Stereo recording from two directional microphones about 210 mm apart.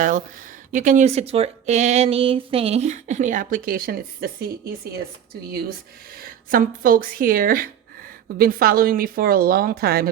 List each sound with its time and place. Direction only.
0.7 s speech: 40° right (ahead or behind)
6.1 s speech: 40° right (ahead or behind)